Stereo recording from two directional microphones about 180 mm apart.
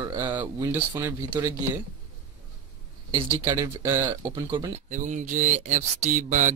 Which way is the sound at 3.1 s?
15° right (ahead or behind).